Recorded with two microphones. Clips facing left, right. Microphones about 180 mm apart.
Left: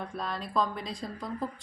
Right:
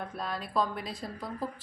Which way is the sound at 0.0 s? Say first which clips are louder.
Left 1 dB; centre (ahead or behind).